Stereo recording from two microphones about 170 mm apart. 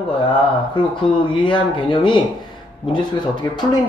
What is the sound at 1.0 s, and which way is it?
A man's voice, 30° left (ahead or behind).